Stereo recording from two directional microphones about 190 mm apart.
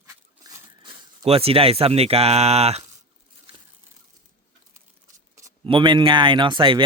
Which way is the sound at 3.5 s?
30° right (ahead or behind).